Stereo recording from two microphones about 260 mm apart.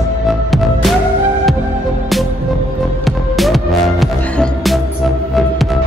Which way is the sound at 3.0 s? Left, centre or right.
Centre.